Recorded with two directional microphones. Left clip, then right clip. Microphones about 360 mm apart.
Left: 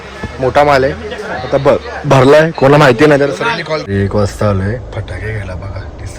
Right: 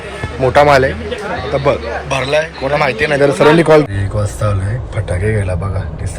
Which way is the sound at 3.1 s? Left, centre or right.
Centre.